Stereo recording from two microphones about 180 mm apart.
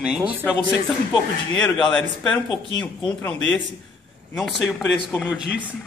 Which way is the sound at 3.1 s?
10° left (ahead or behind).